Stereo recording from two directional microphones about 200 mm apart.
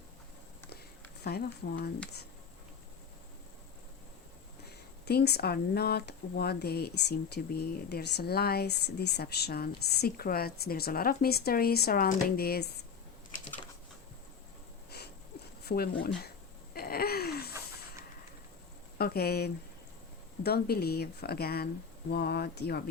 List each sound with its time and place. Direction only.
1.2 s speech: 50° left (ahead or behind)
5.0 s speech: 55° left (ahead or behind)
15.6 s speech: 50° left (ahead or behind)
16.7 s a sound: 50° left (ahead or behind)
18.9 s speech: 50° left (ahead or behind)